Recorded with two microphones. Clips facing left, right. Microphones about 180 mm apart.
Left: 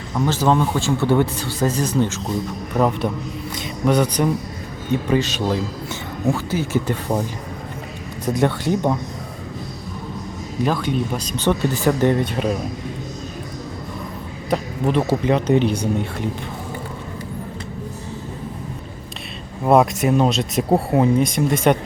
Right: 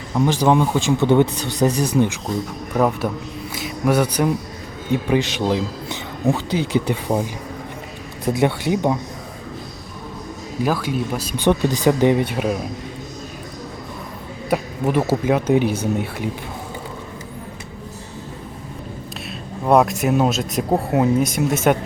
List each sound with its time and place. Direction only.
0.3 s speech: 15° right (ahead or behind)
10.6 s speech: 5° right (ahead or behind)
14.5 s speech: 10° right (ahead or behind)
19.6 s speech: centre (ahead or behind)